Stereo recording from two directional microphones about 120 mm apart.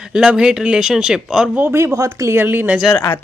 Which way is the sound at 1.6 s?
20° right (ahead or behind).